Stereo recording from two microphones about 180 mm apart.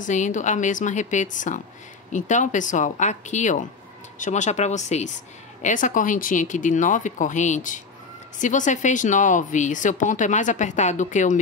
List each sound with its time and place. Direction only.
0.0 s speech: 45° left (ahead or behind)